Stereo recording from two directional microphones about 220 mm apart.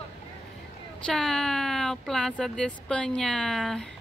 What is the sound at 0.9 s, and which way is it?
A woman's voice, 5° left (ahead or behind).